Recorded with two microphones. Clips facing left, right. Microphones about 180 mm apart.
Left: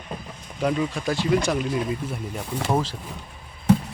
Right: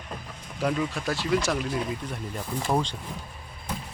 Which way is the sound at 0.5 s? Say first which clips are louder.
Left 3 dB; 5° left (ahead or behind).